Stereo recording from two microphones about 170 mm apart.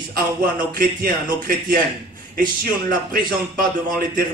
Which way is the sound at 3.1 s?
60° right (ahead or behind).